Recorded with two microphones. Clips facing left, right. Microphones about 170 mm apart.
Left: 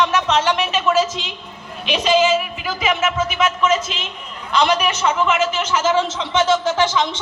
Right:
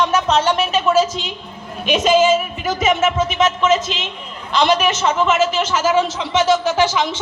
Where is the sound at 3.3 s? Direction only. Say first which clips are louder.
Right 1 dB; 25° right (ahead or behind).